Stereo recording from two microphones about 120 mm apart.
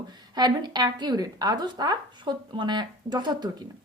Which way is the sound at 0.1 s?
35° right (ahead or behind).